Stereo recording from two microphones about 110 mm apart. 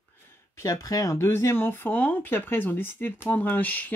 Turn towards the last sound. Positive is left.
turn(degrees=15)  # may be behind; listen again after turning